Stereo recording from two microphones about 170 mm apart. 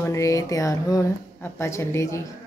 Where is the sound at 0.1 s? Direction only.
20° left (ahead or behind).